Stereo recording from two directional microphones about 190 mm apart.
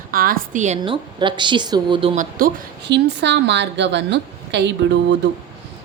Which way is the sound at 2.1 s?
45° right (ahead or behind).